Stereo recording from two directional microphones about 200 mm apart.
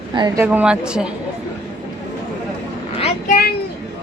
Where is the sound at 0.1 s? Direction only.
20° right (ahead or behind).